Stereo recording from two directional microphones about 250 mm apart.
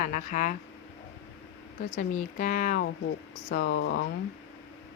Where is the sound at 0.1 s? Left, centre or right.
Left.